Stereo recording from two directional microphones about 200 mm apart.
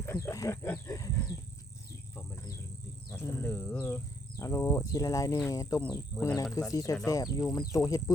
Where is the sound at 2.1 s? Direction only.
15° left (ahead or behind).